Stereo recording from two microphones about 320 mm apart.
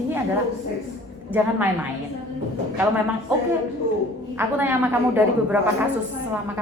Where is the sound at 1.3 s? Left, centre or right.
Centre.